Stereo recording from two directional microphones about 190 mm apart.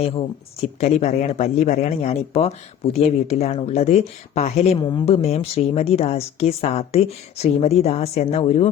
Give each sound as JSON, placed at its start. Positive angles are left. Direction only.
{"t": 0.8, "sound": "speech", "side_deg": 35}